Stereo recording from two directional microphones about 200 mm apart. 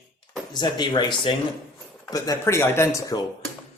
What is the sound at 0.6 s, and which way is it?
Speech, 20° left (ahead or behind).